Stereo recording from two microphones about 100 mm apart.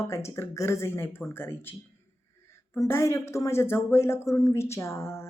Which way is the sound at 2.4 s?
25° left (ahead or behind).